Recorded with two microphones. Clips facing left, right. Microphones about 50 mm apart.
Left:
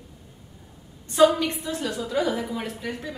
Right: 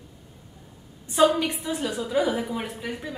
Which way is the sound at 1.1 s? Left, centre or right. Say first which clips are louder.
Left 2 dB; centre.